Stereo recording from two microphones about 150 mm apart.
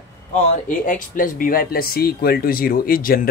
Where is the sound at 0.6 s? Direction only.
60° left (ahead or behind).